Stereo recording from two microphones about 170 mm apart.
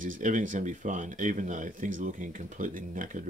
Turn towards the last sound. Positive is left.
turn(degrees=-50)  # may be behind; listen again after turning